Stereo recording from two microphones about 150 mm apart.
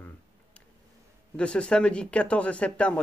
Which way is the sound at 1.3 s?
5° left (ahead or behind).